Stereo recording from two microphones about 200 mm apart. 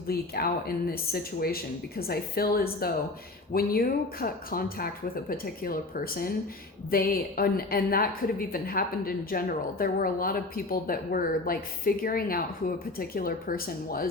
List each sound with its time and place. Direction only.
0.1 s a woman's voice: 50° left (ahead or behind)